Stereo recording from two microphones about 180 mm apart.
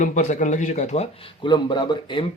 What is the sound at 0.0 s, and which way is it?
Speech, 45° left (ahead or behind).